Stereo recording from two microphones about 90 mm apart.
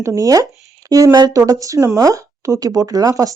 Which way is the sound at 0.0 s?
40° right (ahead or behind).